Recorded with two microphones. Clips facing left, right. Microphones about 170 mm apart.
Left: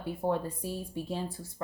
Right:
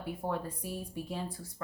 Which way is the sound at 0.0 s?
30° left (ahead or behind).